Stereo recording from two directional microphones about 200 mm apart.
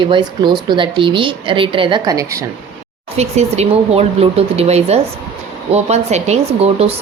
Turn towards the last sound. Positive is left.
turn(degrees=-30)  # may be behind; listen again after turning